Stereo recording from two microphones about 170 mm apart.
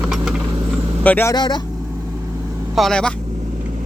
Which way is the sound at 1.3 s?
25° left (ahead or behind).